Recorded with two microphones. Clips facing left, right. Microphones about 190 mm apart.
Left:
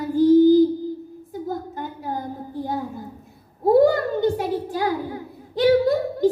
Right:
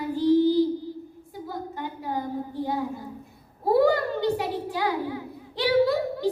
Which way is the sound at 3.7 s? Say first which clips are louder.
Left 4 dB; 45° left (ahead or behind).